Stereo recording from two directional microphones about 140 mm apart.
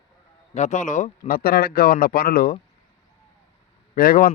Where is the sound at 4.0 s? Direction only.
90° left.